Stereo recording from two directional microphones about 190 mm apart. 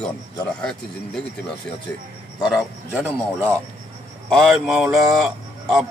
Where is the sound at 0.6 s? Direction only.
5° left (ahead or behind).